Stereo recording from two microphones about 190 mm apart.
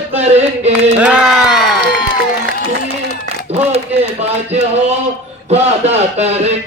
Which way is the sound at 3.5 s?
35° right (ahead or behind).